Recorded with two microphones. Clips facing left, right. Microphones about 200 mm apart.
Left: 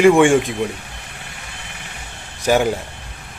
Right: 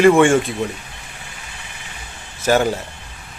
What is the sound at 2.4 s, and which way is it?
Speech, 15° left (ahead or behind).